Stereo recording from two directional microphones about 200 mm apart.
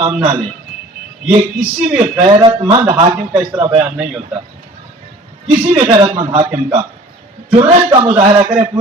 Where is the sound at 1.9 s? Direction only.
20° right (ahead or behind).